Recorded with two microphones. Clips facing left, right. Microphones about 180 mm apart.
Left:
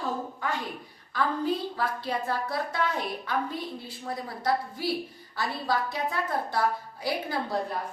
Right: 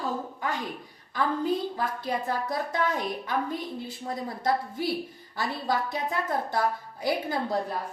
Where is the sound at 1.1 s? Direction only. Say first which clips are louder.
Right 1 dB; 20° right (ahead or behind).